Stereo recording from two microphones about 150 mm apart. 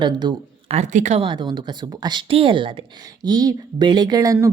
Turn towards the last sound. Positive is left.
turn(degrees=-25)  # may be behind; listen again after turning